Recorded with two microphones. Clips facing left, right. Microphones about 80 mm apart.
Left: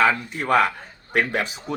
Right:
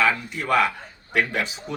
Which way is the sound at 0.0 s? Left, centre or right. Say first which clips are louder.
Left 2 dB; left.